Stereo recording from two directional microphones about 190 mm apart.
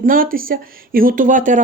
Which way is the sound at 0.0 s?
45° right (ahead or behind).